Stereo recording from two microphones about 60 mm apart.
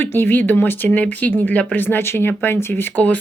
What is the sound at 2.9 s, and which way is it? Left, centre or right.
Speech, left.